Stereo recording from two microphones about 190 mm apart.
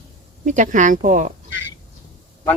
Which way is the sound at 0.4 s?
40° right (ahead or behind).